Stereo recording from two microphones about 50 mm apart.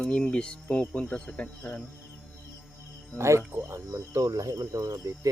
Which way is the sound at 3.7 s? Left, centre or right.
Right.